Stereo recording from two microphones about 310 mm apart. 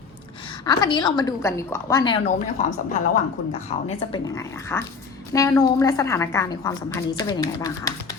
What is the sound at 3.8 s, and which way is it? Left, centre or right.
A woman's voice, centre.